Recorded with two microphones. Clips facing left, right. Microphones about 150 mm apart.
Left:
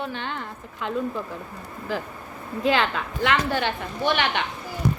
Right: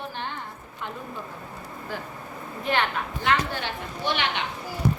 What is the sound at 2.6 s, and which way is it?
Speech, 90° left.